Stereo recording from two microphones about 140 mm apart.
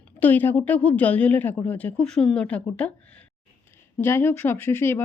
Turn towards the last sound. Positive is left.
turn(degrees=15)  # may be behind; listen again after turning